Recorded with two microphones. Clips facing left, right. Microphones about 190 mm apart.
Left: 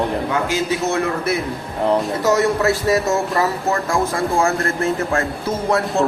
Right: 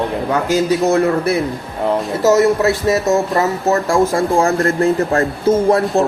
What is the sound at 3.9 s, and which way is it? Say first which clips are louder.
Speech: right 5 dB; 35° right (ahead or behind).